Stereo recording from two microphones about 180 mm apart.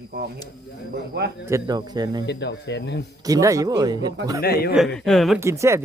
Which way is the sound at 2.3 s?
70° left (ahead or behind).